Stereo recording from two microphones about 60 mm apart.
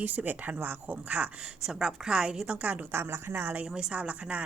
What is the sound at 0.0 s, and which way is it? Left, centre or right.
Speech, right.